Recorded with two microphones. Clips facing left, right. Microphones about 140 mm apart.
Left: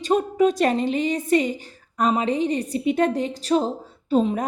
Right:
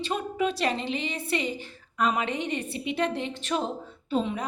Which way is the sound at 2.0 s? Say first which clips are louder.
Left 6 dB; 35° left (ahead or behind).